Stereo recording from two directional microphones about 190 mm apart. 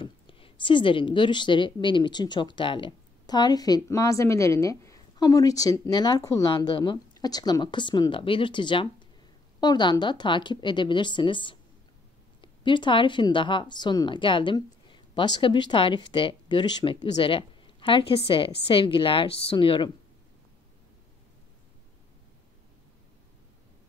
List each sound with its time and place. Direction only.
0.0 s a woman's voice: 25° left (ahead or behind)